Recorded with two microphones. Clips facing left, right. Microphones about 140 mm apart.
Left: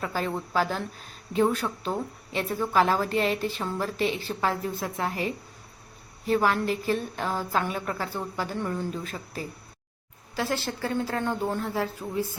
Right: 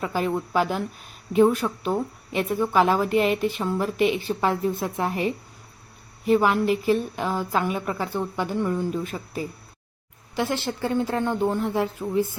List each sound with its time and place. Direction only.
0.0 s a woman's voice: 15° right (ahead or behind)